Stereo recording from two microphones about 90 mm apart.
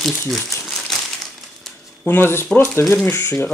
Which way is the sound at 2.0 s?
25° left (ahead or behind).